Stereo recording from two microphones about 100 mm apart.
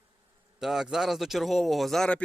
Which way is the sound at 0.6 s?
5° right (ahead or behind).